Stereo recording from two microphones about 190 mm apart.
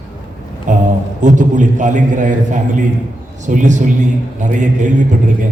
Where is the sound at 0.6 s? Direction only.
40° right (ahead or behind).